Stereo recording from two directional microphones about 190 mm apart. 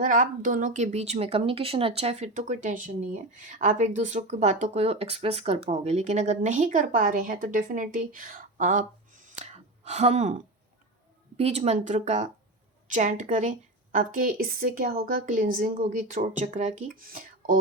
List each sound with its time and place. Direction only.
0.0 s speech: 45° right (ahead or behind)
11.3 s a woman's voice: 35° right (ahead or behind)